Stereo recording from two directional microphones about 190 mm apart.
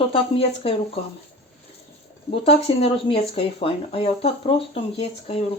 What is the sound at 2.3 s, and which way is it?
Speech, 30° left (ahead or behind).